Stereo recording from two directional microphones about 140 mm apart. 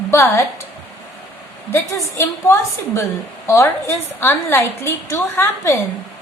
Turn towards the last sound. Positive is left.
turn(degrees=20)  # may be behind; listen again after turning